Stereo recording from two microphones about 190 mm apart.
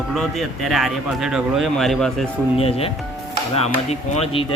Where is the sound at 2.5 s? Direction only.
30° left (ahead or behind).